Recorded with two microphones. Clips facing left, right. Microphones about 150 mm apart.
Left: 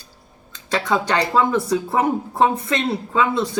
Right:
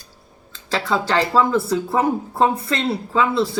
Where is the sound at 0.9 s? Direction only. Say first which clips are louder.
Right 1 dB; 15° left (ahead or behind).